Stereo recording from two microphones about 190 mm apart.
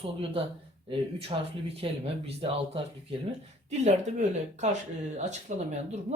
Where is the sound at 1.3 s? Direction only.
30° right (ahead or behind).